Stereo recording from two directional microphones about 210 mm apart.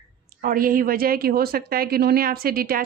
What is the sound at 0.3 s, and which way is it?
A woman's voice, 40° right (ahead or behind).